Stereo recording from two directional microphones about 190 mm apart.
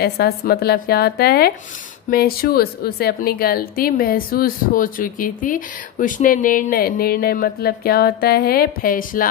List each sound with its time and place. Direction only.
0.0 s a woman's voice: 55° left (ahead or behind)